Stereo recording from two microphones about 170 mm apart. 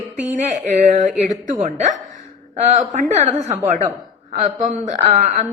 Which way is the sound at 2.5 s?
45° right (ahead or behind).